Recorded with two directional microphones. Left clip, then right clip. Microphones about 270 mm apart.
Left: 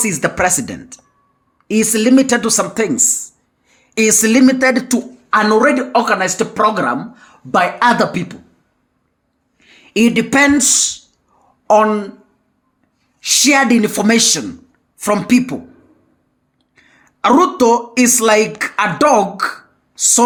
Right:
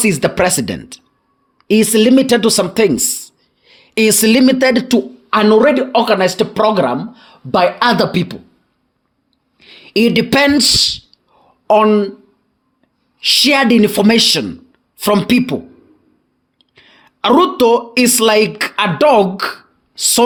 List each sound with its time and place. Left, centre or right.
0.0 s speech: right
9.6 s speech: right
13.1 s speech: right